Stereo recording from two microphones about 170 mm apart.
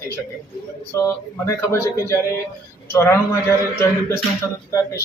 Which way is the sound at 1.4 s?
15° left (ahead or behind).